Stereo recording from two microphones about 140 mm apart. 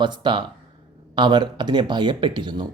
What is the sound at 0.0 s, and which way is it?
Speech, 35° right (ahead or behind).